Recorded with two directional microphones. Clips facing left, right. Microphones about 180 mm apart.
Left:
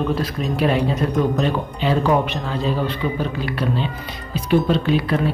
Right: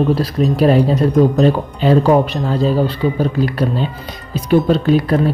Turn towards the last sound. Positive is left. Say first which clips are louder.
# right 5 dB
turn(degrees=-40)  # may be behind; listen again after turning